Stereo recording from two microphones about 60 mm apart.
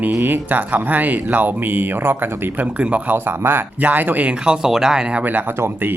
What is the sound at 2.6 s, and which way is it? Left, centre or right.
A man's voice, right.